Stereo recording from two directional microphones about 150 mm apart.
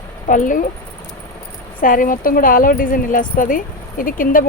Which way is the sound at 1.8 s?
65° left (ahead or behind).